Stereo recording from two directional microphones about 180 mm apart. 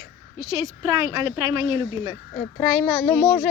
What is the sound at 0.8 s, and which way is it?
Speech, 20° right (ahead or behind).